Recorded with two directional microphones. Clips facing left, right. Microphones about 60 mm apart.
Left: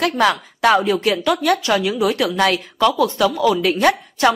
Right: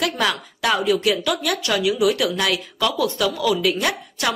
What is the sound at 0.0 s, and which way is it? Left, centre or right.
A woman's voice, left.